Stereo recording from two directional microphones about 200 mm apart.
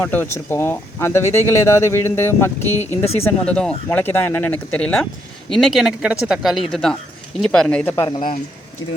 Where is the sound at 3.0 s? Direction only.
30° left (ahead or behind).